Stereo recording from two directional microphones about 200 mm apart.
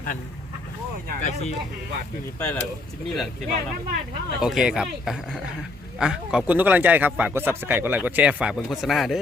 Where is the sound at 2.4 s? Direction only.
10° left (ahead or behind).